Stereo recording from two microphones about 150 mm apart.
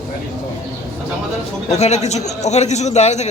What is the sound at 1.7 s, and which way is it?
A man's voice, 50° left (ahead or behind).